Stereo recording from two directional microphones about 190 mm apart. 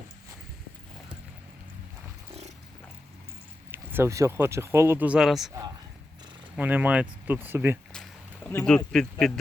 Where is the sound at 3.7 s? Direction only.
10° right (ahead or behind).